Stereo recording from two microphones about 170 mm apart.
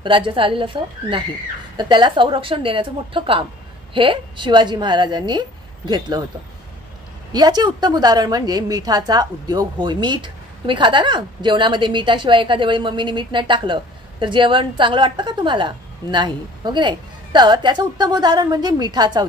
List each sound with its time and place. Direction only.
0.0 s a woman's voice: 30° right (ahead or behind)
7.3 s a woman's voice: 25° right (ahead or behind)